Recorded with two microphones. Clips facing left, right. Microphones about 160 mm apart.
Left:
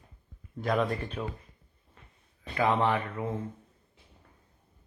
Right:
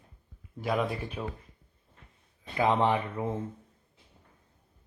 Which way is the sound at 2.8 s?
20° right (ahead or behind).